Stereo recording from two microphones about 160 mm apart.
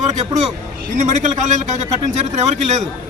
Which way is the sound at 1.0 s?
50° right (ahead or behind).